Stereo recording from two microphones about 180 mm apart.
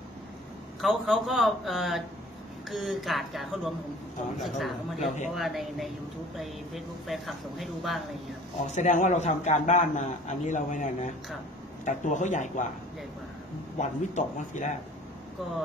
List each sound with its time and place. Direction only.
0.7 s speech: centre (ahead or behind)
8.7 s a man's voice: 45° left (ahead or behind)
13.7 s speech: 40° left (ahead or behind)